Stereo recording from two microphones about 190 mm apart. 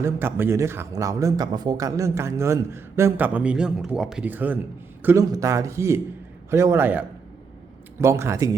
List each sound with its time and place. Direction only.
0.0 s speech: 10° right (ahead or behind)